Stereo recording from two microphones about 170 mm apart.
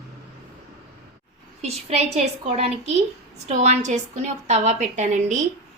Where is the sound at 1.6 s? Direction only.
40° right (ahead or behind).